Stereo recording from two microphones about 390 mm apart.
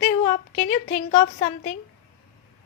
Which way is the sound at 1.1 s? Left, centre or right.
Centre.